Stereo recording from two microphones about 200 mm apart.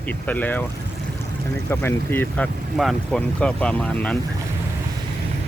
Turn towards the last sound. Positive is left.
turn(degrees=5)  # may be behind; listen again after turning